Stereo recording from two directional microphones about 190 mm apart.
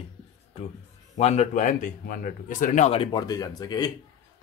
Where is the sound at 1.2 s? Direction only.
35° left (ahead or behind).